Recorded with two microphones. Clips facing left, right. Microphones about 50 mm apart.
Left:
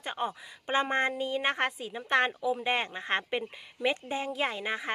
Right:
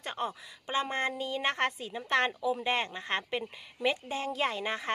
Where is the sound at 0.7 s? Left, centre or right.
Left.